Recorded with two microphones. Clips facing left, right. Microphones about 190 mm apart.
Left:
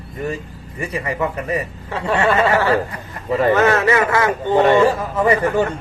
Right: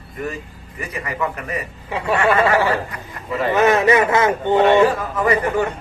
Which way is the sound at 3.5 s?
15° right (ahead or behind).